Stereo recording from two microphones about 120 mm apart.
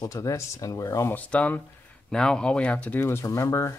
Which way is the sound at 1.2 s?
10° left (ahead or behind).